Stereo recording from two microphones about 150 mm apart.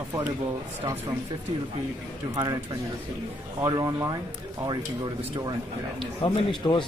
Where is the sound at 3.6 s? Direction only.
25° right (ahead or behind).